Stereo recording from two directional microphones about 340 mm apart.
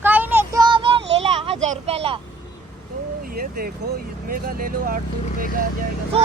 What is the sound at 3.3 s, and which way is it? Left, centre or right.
Speech, right.